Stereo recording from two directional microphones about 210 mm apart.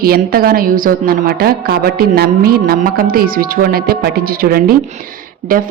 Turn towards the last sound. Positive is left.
turn(degrees=-40)  # may be behind; listen again after turning